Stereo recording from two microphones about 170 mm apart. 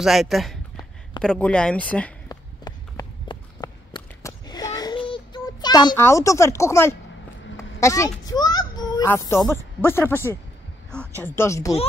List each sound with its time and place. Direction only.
0.0 s speech: centre (ahead or behind)
2.2 s run: 25° left (ahead or behind)
7.8 s a sound: 20° left (ahead or behind)
9.0 s speech: 15° left (ahead or behind)